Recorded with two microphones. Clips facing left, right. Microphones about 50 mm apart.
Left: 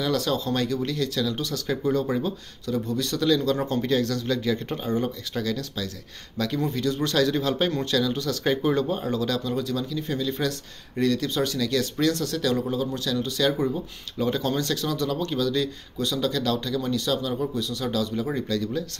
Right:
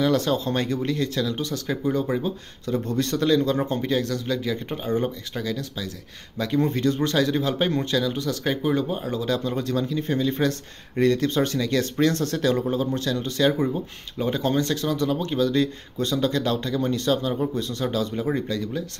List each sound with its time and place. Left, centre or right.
0.0 s speech: right
1.7 s speech: centre
2.9 s speech: right
3.3 s speech: right
4.8 s speech: right
6.6 s speech: right; by 8.4 s centre
8.5 s speech: centre
9.1 s speech: right
9.6 s speech: right